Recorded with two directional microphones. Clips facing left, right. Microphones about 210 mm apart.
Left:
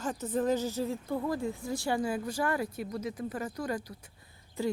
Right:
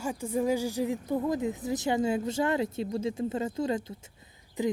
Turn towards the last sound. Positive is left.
turn(degrees=-20)  # may be behind; listen again after turning